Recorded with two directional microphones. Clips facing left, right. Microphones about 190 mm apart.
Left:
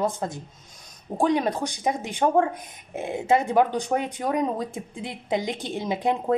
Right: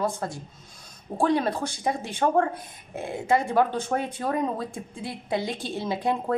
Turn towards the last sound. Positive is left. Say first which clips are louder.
# left 2 dB
turn(degrees=20)  # may be behind; listen again after turning